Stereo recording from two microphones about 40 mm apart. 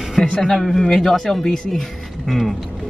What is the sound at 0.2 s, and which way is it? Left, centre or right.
A man's voice, centre.